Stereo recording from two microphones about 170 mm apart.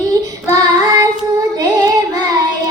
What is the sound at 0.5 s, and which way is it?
Child singing, 20° right (ahead or behind).